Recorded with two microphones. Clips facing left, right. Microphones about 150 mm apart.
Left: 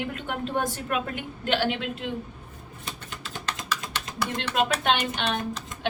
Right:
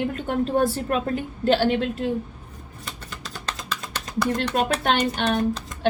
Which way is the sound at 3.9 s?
40° right (ahead or behind).